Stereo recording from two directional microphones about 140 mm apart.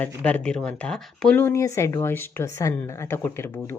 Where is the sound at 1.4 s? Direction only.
20° left (ahead or behind).